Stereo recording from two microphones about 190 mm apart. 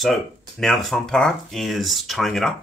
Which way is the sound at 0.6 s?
Centre (ahead or behind).